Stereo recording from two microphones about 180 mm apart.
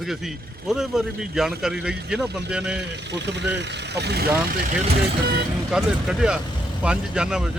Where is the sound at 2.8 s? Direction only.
70° right (ahead or behind).